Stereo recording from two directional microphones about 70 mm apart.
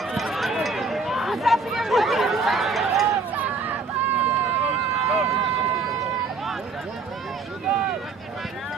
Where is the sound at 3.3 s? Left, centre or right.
Right.